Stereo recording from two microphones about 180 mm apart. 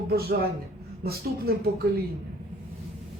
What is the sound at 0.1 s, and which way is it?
A woman's voice, 60° right (ahead or behind).